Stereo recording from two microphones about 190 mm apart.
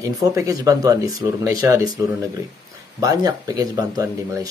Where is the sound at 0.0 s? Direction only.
15° right (ahead or behind).